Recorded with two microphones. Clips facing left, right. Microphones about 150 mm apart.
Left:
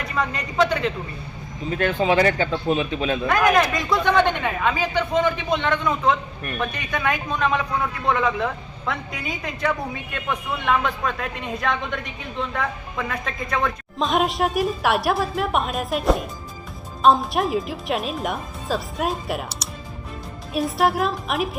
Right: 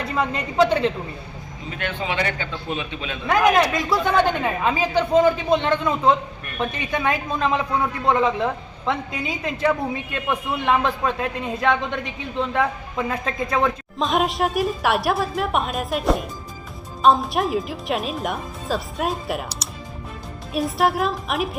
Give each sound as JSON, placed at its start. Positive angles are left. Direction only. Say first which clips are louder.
{"t": 0.1, "sound": "a man's voice", "louder": "right 1 dB", "side_deg": -30}
{"t": 1.7, "sound": "a man's voice", "louder": "left 7 dB", "side_deg": 40}
{"t": 3.2, "sound": "a man's voice", "louder": "right 2 dB", "side_deg": -20}
{"t": 3.7, "sound": "a woman's voice", "louder": "right 1 dB", "side_deg": -5}
{"t": 4.2, "sound": "a man's voice", "louder": "even", "side_deg": -35}
{"t": 14.0, "sound": "a woman's voice", "louder": "even", "side_deg": 0}